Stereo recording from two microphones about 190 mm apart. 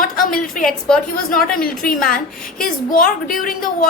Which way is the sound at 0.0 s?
45° left (ahead or behind).